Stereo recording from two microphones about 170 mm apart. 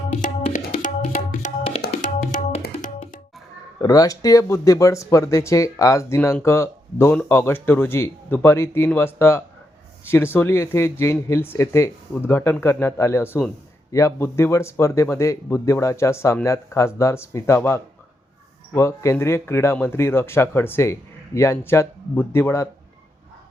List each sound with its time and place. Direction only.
0.1 s tabla: 45° left (ahead or behind)
3.8 s speech: 20° left (ahead or behind)